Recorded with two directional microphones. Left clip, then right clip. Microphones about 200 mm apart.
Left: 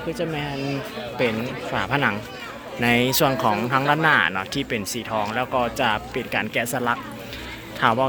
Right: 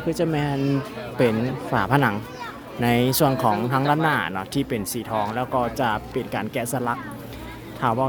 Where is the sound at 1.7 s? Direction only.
30° right (ahead or behind).